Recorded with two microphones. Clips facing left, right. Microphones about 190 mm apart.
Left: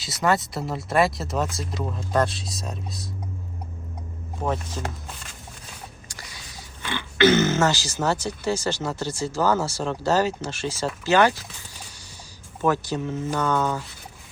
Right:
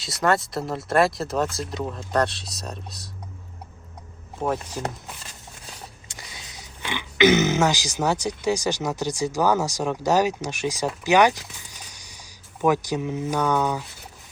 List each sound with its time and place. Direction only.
0.0 s speech: centre (ahead or behind)
4.4 s speech: 10° right (ahead or behind)
6.1 s speech: 20° right (ahead or behind)
12.6 s speech: 15° right (ahead or behind)